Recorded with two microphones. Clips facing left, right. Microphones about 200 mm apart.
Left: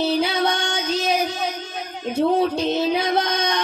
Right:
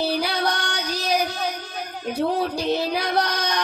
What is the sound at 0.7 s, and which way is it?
Child singing, 25° left (ahead or behind).